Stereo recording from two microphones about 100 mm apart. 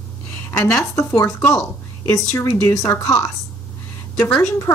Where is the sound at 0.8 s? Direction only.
30° left (ahead or behind).